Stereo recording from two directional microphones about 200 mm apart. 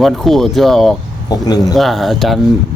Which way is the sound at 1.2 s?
20° left (ahead or behind).